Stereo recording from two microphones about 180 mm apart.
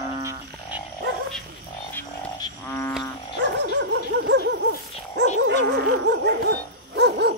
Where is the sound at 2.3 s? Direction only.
20° left (ahead or behind).